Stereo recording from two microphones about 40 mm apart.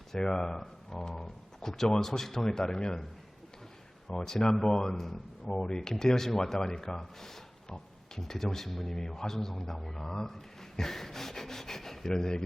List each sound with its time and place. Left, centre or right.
0.1 s speech: centre
0.9 s a sound: centre
1.1 s speech: centre
4.1 s a man's voice: centre